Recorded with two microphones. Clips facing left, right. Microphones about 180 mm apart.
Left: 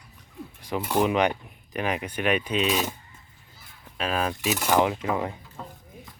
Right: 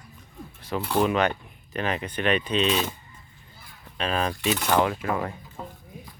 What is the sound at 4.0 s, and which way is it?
Speech, 5° left (ahead or behind).